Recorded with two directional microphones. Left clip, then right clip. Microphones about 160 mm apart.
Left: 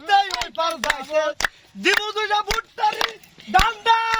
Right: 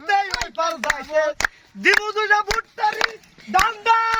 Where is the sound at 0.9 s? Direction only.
10° right (ahead or behind).